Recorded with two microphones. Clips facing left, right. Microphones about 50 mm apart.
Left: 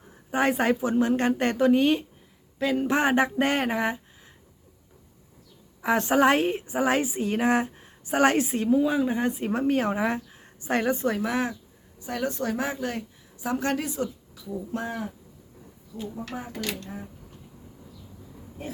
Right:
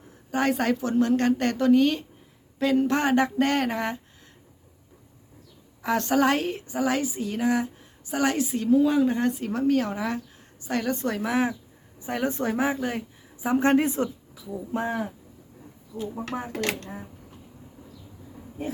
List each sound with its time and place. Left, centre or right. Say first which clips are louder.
0.3 s a woman's voice: left 1 dB; left
2.6 s speech: right 3 dB; centre
2.8 s a woman's voice: even; centre
5.8 s a woman's voice: left 1 dB; left
8.7 s speech: right 3 dB; centre
9.4 s a woman's voice: right 1 dB; left
10.9 s a woman's voice: even; centre
11.9 s a woman's voice: right 2 dB; right
14.3 s speech: right 2 dB; centre
16.1 s speech: right 4 dB; right
16.5 s speech: right 5 dB; right